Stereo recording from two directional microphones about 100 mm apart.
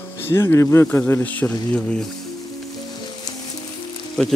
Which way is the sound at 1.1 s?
15° left (ahead or behind).